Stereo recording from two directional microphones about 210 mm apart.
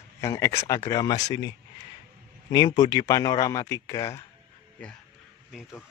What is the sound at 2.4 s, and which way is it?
Speech, 20° left (ahead or behind).